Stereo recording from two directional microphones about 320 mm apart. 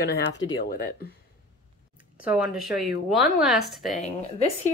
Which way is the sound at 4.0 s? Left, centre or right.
Left.